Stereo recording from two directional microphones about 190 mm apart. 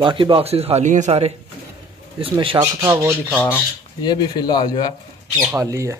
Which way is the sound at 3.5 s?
20° left (ahead or behind).